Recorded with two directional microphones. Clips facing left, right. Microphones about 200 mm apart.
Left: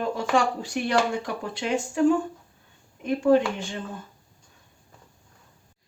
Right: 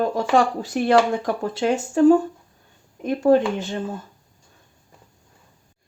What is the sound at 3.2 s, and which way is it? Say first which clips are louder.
Speech: right 3 dB; 40° right (ahead or behind).